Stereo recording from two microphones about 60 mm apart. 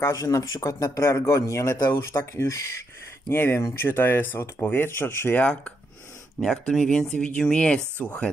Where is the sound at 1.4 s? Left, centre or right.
Left.